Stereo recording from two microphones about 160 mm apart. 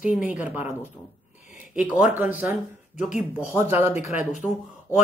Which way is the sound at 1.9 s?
10° right (ahead or behind).